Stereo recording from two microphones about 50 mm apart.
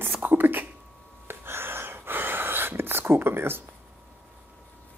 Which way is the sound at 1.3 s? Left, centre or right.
Right.